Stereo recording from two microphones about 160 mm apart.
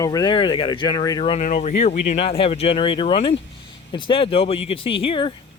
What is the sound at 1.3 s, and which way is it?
Speech, 50° left (ahead or behind).